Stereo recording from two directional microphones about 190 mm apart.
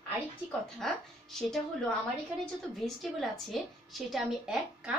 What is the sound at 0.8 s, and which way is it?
A woman's voice, centre (ahead or behind).